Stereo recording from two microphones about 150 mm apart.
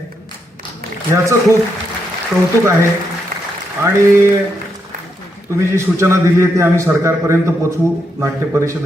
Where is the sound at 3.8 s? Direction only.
20° right (ahead or behind).